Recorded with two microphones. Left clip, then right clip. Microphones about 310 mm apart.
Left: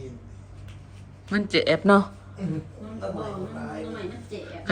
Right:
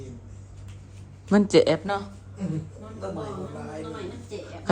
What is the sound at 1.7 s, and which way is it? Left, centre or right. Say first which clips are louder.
Speech: left 9 dB; centre.